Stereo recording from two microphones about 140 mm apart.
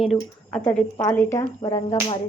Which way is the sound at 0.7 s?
30° left (ahead or behind).